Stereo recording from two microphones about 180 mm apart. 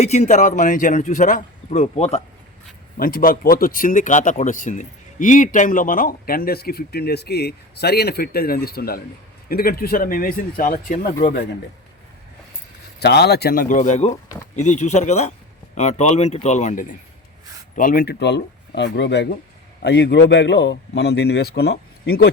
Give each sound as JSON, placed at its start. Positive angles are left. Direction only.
{"t": 0.0, "sound": "speech", "side_deg": 40}
{"t": 3.0, "sound": "speech", "side_deg": 50}
{"t": 13.0, "sound": "speech", "side_deg": 65}
{"t": 19.8, "sound": "speech", "side_deg": 65}